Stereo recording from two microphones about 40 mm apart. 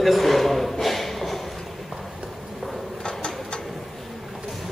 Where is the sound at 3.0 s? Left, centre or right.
Left.